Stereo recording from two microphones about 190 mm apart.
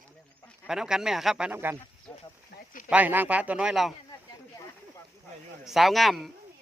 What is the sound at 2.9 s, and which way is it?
Speech, 10° right (ahead or behind).